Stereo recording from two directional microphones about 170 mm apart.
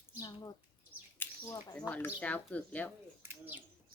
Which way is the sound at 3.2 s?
10° right (ahead or behind).